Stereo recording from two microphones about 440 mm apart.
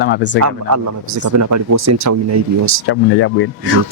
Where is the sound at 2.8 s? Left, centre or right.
Left.